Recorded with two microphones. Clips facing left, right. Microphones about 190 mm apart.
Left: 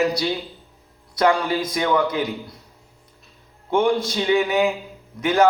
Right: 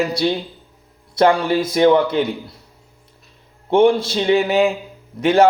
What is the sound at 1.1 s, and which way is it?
A man's voice, 25° right (ahead or behind).